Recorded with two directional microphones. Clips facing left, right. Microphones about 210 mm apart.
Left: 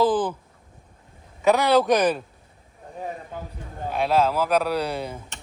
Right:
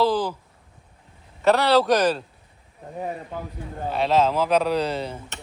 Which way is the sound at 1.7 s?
15° left (ahead or behind).